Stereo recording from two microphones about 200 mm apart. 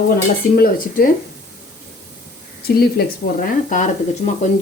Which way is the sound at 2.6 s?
50° left (ahead or behind).